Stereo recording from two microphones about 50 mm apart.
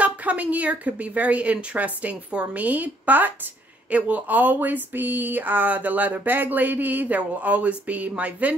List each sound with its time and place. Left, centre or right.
0.0 s speech: right